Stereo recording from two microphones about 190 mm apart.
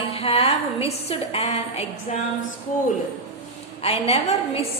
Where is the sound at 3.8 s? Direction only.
35° left (ahead or behind).